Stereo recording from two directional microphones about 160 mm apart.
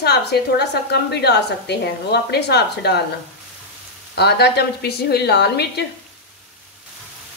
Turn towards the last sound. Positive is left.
turn(degrees=90)